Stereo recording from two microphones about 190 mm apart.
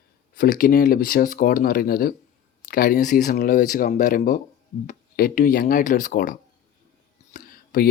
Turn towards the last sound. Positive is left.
turn(degrees=50)  # may be behind; listen again after turning